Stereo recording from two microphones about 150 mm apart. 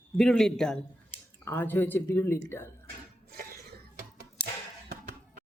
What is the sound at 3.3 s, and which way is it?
Cough, 90° right.